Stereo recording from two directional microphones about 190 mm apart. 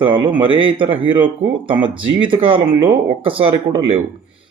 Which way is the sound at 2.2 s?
30° right (ahead or behind).